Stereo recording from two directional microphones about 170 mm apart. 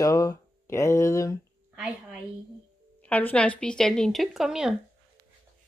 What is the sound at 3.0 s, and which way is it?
A woman's voice, 10° left (ahead or behind).